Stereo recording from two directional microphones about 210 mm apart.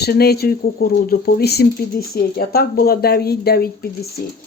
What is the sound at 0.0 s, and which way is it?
Speech, 50° left (ahead or behind).